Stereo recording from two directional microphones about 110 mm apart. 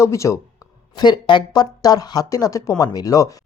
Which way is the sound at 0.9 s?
40° left (ahead or behind).